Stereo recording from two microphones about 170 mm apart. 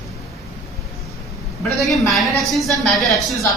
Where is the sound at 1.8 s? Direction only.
Centre (ahead or behind).